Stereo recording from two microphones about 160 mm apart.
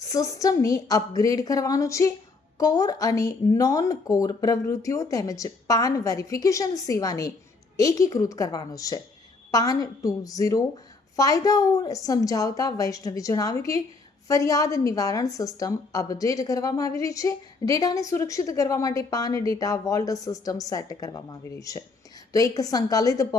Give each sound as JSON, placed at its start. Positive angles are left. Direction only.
{"t": 0.0, "sound": "a woman's voice", "side_deg": 20}